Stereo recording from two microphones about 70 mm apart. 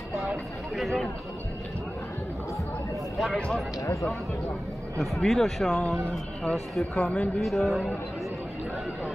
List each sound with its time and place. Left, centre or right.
0.7 s speech: centre
3.3 s speech: centre
4.9 s speech: centre
7.0 s speech: centre
7.3 s speech: centre